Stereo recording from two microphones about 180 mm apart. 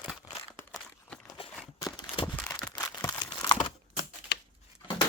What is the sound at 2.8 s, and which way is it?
Crumpling, 20° left (ahead or behind).